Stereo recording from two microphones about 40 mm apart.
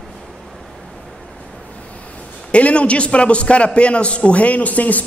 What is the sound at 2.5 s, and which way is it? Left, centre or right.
A man's voice, left.